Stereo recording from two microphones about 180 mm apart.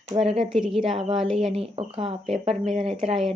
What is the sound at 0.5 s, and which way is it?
Speech, centre (ahead or behind).